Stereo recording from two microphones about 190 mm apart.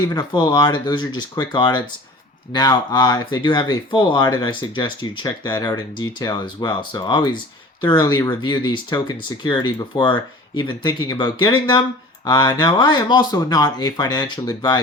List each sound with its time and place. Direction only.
0.1 s speech: 25° left (ahead or behind)